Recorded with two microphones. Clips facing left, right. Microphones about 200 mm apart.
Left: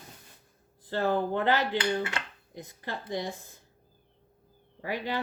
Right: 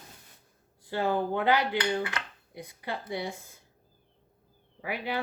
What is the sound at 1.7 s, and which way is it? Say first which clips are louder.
Dishes: even; 25° left (ahead or behind).